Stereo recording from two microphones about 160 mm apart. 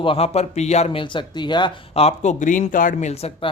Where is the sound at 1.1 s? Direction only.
30° left (ahead or behind).